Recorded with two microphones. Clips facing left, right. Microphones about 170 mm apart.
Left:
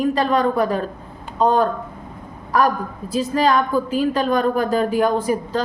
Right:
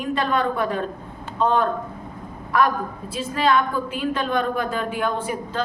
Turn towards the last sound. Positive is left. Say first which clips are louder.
# left 6 dB
turn(degrees=40)  # may be behind; listen again after turning